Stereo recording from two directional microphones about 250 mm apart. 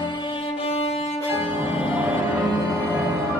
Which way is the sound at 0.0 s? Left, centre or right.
Centre.